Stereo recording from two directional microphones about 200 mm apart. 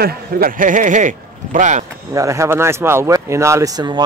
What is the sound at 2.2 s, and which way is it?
Speech, 15° right (ahead or behind).